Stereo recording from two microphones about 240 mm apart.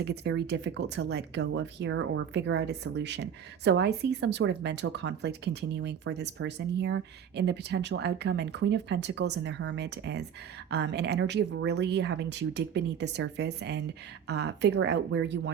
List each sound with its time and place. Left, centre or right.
0.0 s speech: right